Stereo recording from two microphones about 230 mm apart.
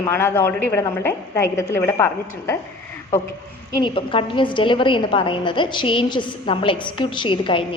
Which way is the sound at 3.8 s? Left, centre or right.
Left.